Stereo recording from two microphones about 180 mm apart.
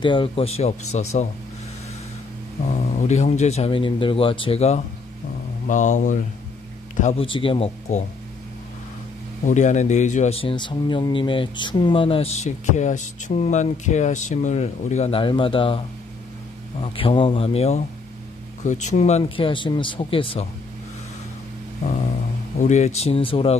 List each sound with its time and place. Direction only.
0.0 s speech: 30° left (ahead or behind)
2.6 s speech: 40° left (ahead or behind)
7.2 s speech: 30° left (ahead or behind)
9.5 s speech: 40° left (ahead or behind)
16.8 s speech: 30° left (ahead or behind)
22.6 s speech: 40° left (ahead or behind)